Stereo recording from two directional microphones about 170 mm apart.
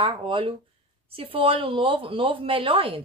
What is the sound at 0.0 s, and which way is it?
Speech, 30° right (ahead or behind).